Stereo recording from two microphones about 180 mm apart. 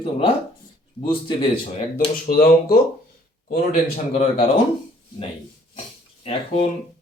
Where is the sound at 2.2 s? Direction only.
55° left (ahead or behind).